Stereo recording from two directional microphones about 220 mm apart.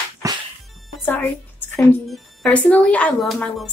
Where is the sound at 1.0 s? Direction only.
10° left (ahead or behind).